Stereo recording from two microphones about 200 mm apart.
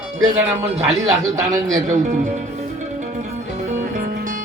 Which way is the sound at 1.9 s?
40° right (ahead or behind).